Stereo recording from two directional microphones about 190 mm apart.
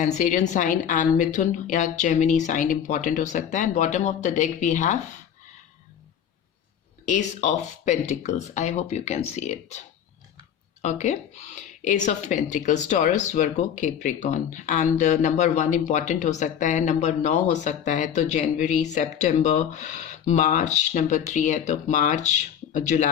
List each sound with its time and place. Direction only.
0.0 s speech: 40° left (ahead or behind)
7.0 s speech: 40° left (ahead or behind)
10.8 s speech: 40° left (ahead or behind)